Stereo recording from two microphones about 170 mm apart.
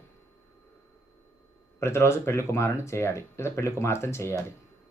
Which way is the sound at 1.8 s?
15° left (ahead or behind).